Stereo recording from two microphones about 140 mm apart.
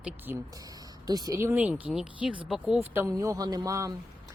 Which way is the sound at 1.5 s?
10° right (ahead or behind).